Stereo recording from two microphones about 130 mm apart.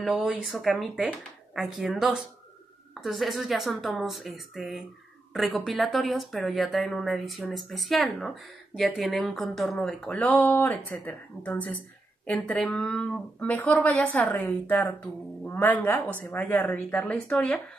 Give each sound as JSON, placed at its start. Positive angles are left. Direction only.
{"t": 0.0, "sound": "speech", "side_deg": -5}